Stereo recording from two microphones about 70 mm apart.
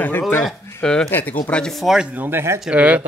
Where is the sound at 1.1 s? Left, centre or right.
Left.